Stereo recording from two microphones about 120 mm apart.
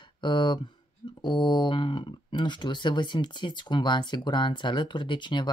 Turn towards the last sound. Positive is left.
turn(degrees=40)  # may be behind; listen again after turning